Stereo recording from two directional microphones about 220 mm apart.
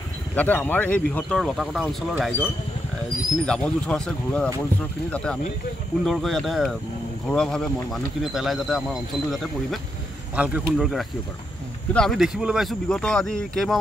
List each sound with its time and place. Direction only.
0.4 s speech: 10° left (ahead or behind)